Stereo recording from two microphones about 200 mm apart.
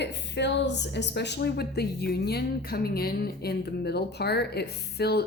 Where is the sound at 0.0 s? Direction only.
60° left (ahead or behind).